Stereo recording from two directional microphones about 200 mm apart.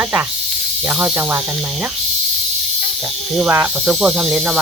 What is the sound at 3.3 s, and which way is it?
Speech, 10° right (ahead or behind).